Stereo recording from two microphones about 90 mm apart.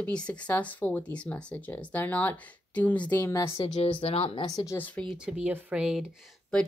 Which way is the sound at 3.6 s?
65° left (ahead or behind).